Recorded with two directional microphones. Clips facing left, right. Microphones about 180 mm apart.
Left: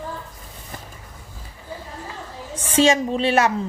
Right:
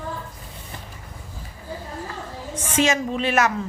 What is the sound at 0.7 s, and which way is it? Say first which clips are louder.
Vehicle: left 3 dB; 45° left (ahead or behind).